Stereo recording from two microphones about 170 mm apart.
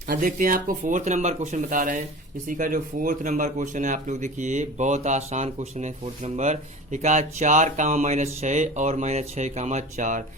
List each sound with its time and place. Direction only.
0.1 s speech: 50° right (ahead or behind)